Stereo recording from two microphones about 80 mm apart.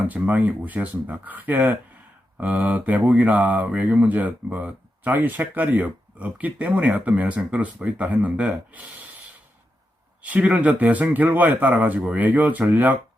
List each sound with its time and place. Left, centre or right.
0.1 s speech: centre
10.2 s speech: centre